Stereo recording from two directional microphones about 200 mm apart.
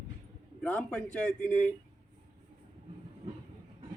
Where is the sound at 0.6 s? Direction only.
5° left (ahead or behind).